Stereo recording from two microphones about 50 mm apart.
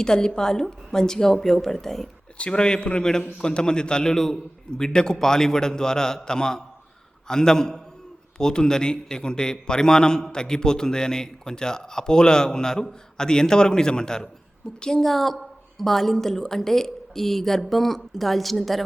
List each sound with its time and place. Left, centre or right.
0.0 s a man's voice: centre
15.1 s a woman's voice: centre